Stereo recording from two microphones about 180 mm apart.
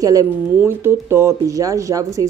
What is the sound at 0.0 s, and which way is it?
Speech, 20° right (ahead or behind).